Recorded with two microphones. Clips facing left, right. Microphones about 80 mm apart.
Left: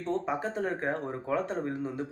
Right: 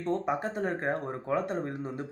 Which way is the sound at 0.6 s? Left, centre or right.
Right.